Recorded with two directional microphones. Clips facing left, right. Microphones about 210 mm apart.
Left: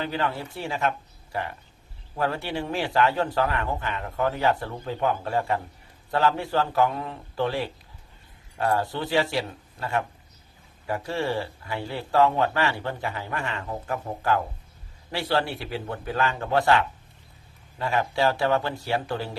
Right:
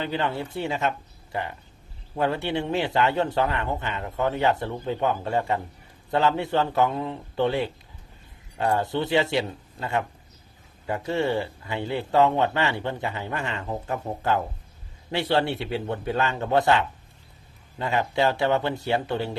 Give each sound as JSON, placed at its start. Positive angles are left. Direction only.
{"t": 0.0, "sound": "speech", "side_deg": -20}